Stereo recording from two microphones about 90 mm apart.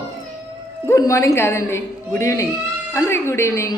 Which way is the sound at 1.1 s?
35° left (ahead or behind).